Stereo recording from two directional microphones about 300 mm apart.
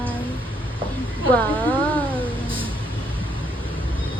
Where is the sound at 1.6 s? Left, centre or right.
Centre.